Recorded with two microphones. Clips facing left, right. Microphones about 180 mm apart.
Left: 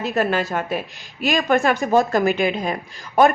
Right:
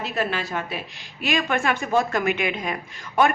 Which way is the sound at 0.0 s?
45° left (ahead or behind).